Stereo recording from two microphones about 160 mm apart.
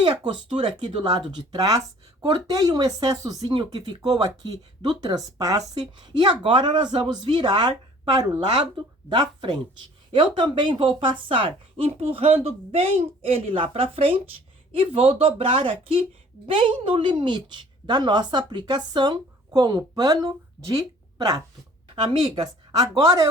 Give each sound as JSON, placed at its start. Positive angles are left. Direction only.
{"t": 0.0, "sound": "speech", "side_deg": -30}